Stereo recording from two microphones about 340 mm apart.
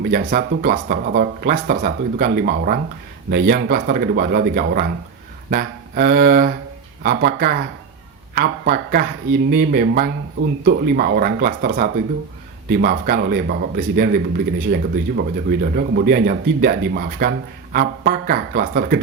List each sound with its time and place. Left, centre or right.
0.0 s speech: right
5.5 s a sound: right
7.0 s speech: right